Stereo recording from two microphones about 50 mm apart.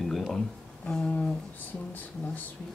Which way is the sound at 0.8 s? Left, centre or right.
Centre.